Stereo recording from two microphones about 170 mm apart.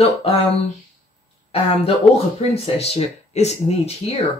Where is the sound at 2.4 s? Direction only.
40° left (ahead or behind).